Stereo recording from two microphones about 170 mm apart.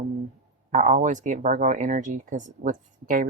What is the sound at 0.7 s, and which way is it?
Speech, 50° right (ahead or behind).